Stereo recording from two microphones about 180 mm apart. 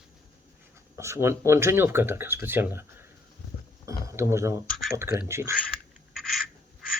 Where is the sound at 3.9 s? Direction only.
15° right (ahead or behind).